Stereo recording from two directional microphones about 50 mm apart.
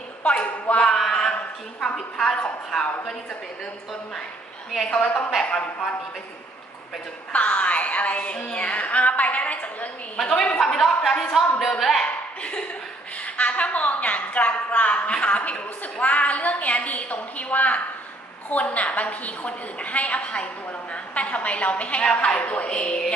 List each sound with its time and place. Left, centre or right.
0.2 s speech: left; by 2.9 s centre
4.9 s a woman's voice: left
7.3 s a woman's voice: left
10.2 s speech: centre
12.0 s a woman's voice: centre